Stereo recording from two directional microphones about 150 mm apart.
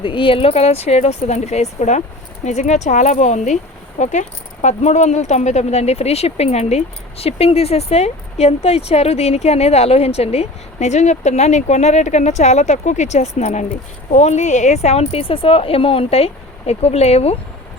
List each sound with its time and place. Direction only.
0.0 s speech: 35° left (ahead or behind)